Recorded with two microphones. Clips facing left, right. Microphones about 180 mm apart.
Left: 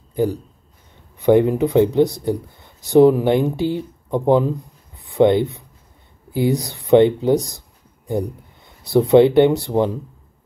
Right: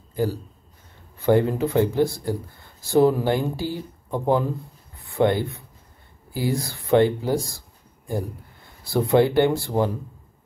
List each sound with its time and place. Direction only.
0.1 s speech: 15° left (ahead or behind)